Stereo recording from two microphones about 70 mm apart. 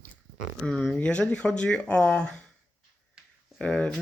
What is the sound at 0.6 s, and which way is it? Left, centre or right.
Speech, centre.